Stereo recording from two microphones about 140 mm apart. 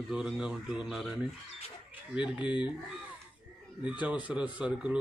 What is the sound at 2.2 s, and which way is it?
Speech, 10° right (ahead or behind).